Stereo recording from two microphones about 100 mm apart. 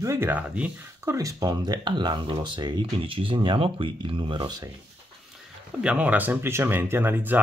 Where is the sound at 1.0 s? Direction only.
35° right (ahead or behind); by 4.5 s 55° right (ahead or behind).